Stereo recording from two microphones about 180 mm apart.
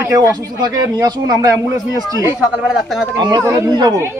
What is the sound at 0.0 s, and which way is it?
Speech, 15° right (ahead or behind).